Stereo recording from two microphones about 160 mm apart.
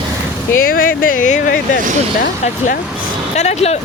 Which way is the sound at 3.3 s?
45° left (ahead or behind).